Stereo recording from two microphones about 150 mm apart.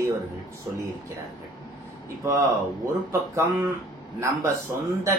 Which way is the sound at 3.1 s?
15° right (ahead or behind).